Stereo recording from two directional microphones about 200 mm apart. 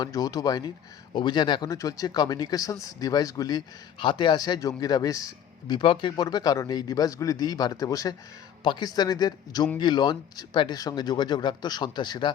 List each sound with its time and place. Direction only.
0.0 s a man's voice: 20° left (ahead or behind)